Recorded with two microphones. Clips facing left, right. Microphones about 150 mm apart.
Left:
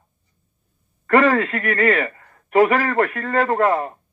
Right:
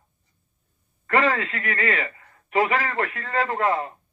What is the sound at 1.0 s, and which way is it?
A man's voice, 45° left (ahead or behind).